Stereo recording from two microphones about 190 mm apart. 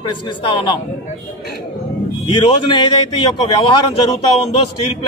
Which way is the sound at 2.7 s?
25° left (ahead or behind).